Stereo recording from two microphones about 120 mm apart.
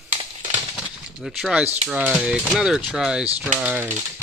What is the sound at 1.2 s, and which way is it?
Speech, 5° right (ahead or behind).